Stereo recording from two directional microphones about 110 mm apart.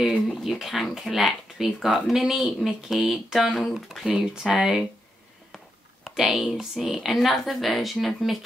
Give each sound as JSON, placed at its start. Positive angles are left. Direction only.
{"t": 0.4, "sound": "speech", "side_deg": 0}
{"t": 6.0, "sound": "speech", "side_deg": 0}